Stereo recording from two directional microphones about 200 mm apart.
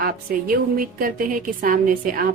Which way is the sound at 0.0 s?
45° right (ahead or behind).